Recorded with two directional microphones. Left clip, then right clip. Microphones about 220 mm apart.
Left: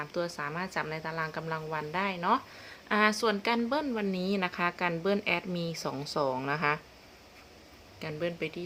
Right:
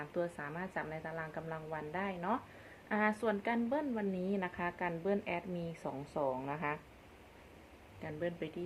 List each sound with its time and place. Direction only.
0.0 s a woman's voice: 15° left (ahead or behind); by 6.7 s 35° left (ahead or behind)
8.0 s a woman's voice: 25° left (ahead or behind)